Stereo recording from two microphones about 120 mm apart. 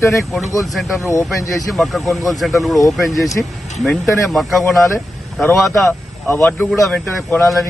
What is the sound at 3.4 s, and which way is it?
Speech, 15° left (ahead or behind).